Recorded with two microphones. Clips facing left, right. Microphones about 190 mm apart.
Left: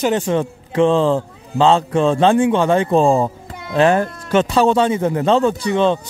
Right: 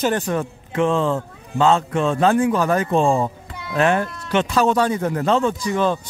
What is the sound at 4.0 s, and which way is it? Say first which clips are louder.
Speech: left 4 dB; 45° left (ahead or behind).